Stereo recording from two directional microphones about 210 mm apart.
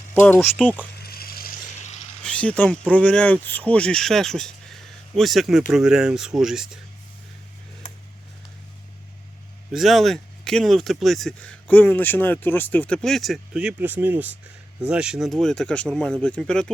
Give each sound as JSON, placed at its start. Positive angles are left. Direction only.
{"t": 0.1, "sound": "speech", "side_deg": 10}
{"t": 1.0, "sound": "a sound", "side_deg": 45}
{"t": 2.2, "sound": "speech", "side_deg": 5}
{"t": 9.7, "sound": "speech", "side_deg": 0}